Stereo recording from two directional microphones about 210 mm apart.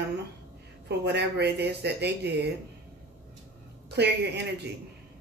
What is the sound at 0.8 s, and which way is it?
Speech, 55° right (ahead or behind).